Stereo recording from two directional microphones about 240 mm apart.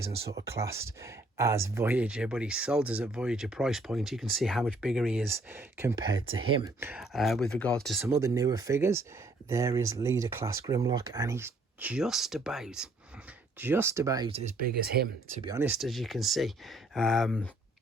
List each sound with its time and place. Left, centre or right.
0.0 s speech: centre
6.1 s speech: right
6.7 s speech: centre
8.0 s speech: centre
14.6 s speech: right
15.4 s speech: centre